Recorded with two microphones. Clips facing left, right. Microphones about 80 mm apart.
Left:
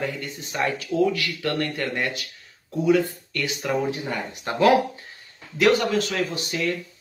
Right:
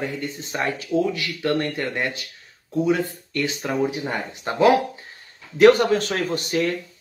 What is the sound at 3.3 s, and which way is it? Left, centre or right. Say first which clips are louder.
Speech: right 3 dB; right.